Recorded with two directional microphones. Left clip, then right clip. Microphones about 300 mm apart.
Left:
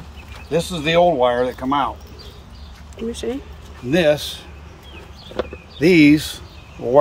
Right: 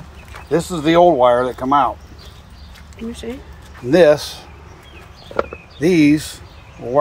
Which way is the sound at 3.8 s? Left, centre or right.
Centre.